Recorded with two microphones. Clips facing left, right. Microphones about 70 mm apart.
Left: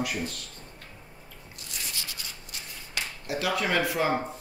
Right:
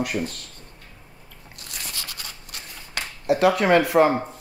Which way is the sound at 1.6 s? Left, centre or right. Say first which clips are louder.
Right 3 dB; right.